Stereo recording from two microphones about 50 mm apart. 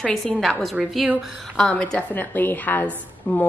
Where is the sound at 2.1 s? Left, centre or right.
Left.